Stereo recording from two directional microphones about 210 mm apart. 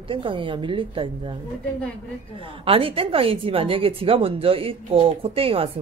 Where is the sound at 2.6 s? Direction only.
25° right (ahead or behind).